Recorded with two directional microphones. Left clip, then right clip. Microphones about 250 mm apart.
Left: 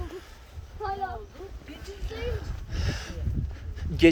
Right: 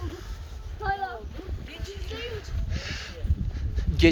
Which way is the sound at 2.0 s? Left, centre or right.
Centre.